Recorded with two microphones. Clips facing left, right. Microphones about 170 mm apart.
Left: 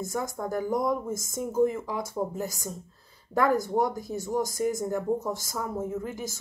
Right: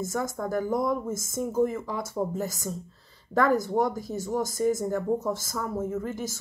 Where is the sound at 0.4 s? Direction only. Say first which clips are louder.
Right 1 dB; 15° left (ahead or behind).